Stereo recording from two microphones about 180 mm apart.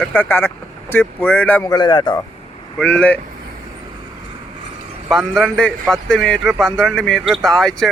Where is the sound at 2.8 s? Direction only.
5° left (ahead or behind).